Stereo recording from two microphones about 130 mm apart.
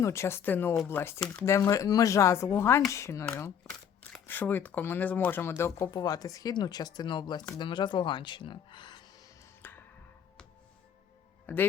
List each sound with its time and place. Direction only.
0.0 s speech: 20° left (ahead or behind)
5.9 s speech: 30° left (ahead or behind)
9.6 s tick-tock: 15° left (ahead or behind)
11.5 s speech: 15° left (ahead or behind)